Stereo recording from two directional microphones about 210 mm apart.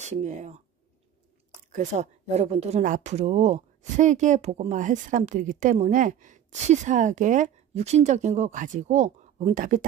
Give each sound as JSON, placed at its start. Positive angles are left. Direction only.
{"t": 0.0, "sound": "speech", "side_deg": -35}
{"t": 1.7, "sound": "speech", "side_deg": -35}